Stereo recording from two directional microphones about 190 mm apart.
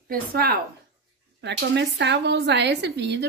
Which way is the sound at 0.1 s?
55° right (ahead or behind).